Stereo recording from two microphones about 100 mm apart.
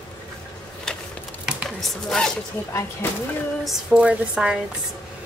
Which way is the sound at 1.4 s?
Centre (ahead or behind).